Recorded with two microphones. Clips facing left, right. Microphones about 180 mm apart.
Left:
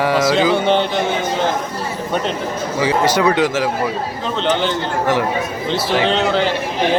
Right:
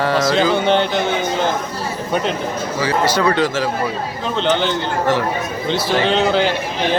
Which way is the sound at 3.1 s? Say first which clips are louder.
Left 1 dB; 15° left (ahead or behind).